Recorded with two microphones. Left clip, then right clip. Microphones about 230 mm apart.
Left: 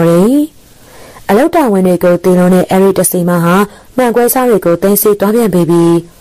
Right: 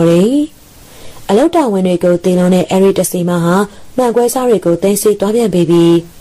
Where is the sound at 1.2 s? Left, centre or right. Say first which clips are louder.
Left 2 dB; left.